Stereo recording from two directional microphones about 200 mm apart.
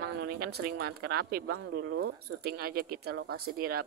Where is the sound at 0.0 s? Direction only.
50° right (ahead or behind).